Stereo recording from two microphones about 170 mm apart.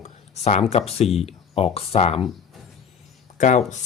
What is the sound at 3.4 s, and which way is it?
Speech, 45° left (ahead or behind).